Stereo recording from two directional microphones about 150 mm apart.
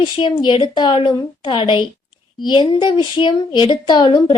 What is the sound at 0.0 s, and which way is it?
A woman's voice, 30° left (ahead or behind).